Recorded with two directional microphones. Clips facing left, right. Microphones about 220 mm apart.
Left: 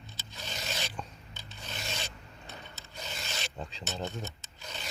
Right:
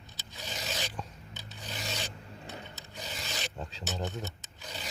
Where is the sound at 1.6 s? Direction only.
15° right (ahead or behind).